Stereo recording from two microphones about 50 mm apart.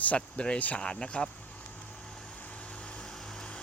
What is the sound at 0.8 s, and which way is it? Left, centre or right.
Speech, centre.